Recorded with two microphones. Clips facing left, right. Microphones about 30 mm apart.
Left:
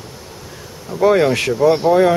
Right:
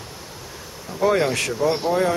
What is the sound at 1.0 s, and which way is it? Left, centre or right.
Speech, centre.